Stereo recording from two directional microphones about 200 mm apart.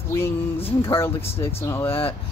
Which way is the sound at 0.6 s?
25° left (ahead or behind).